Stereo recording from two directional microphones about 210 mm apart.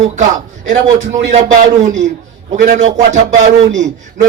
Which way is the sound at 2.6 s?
35° right (ahead or behind).